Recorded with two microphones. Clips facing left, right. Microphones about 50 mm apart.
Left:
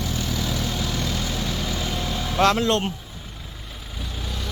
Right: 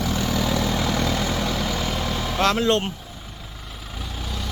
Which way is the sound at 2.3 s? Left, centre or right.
Centre.